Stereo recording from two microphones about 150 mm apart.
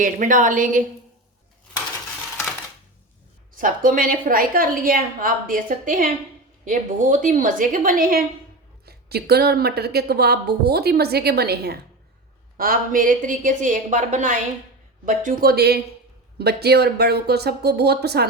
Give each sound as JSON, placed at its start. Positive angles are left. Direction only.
{"t": 0.0, "sound": "a woman's voice", "side_deg": -60}
{"t": 3.6, "sound": "a woman's voice", "side_deg": -65}
{"t": 8.9, "sound": "a woman's voice", "side_deg": -90}
{"t": 12.5, "sound": "a woman's voice", "side_deg": -70}